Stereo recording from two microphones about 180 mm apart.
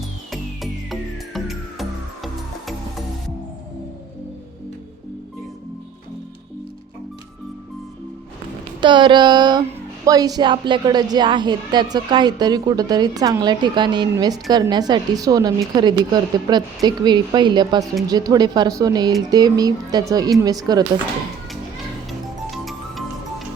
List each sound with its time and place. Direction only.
0.3 s music: centre (ahead or behind)
8.8 s a woman's voice: 25° right (ahead or behind)
22.5 s music: centre (ahead or behind)